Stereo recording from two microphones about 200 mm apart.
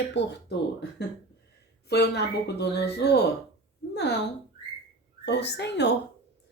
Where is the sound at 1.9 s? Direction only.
55° left (ahead or behind).